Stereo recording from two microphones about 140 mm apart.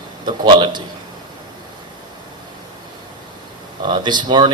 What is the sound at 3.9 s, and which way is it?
Speech, 30° right (ahead or behind).